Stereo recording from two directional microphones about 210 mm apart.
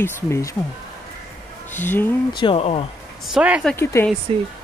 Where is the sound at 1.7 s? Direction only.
10° left (ahead or behind).